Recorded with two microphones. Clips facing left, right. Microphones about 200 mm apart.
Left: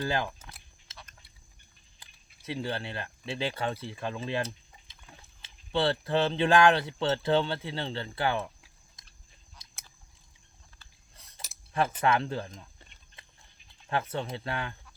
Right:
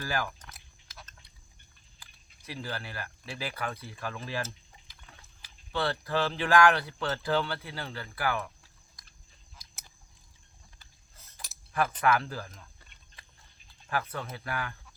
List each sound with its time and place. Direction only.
0.0 s speech: 20° left (ahead or behind)
0.9 s a sound: 25° left (ahead or behind)
2.5 s speech: 25° left (ahead or behind)
11.3 s cutlery: 25° left (ahead or behind)
13.9 s speech: 25° left (ahead or behind)